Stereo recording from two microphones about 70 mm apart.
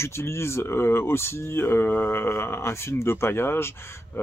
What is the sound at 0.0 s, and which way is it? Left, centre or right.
Speech, left.